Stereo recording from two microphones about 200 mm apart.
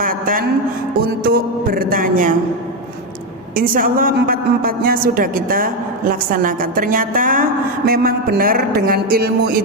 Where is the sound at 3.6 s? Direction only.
45° right (ahead or behind).